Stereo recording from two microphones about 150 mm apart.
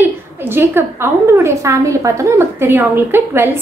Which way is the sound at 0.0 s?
15° right (ahead or behind).